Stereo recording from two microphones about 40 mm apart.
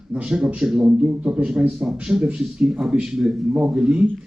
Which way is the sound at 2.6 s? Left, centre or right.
Centre.